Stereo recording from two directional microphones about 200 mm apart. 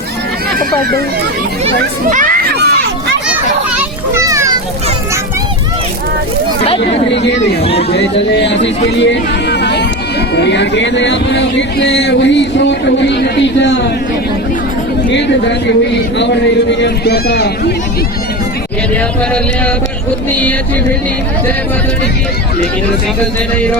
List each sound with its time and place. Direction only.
1.6 s children playing: 40° right (ahead or behind)
3.8 s children playing: 15° right (ahead or behind)
6.7 s speech: 60° left (ahead or behind)
7.6 s speech: 30° left (ahead or behind)
7.9 s speech: 60° left (ahead or behind)
15.1 s speech: 60° left (ahead or behind)